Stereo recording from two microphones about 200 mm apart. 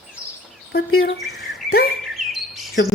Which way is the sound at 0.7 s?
50° left (ahead or behind).